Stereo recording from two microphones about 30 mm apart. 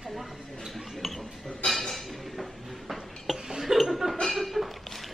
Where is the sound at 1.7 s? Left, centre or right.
Centre.